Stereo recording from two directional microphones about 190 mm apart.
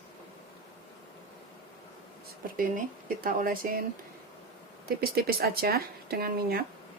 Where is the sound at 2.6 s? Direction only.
50° right (ahead or behind).